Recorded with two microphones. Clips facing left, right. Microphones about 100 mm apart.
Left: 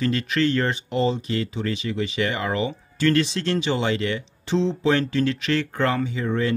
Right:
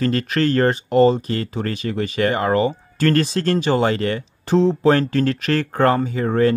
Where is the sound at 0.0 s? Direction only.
45° right (ahead or behind).